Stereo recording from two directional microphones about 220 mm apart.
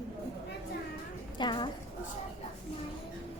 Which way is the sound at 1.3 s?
20° left (ahead or behind).